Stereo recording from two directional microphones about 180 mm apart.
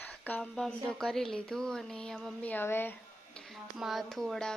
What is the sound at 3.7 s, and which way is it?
Speech, centre (ahead or behind).